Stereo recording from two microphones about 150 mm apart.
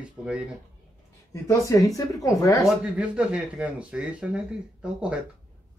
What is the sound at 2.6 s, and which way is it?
Speech, 5° right (ahead or behind).